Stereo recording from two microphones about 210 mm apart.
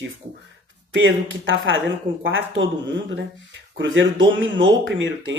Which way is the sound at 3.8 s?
65° right (ahead or behind).